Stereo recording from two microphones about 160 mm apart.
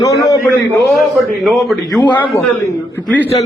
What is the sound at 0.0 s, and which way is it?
Speech, 20° left (ahead or behind).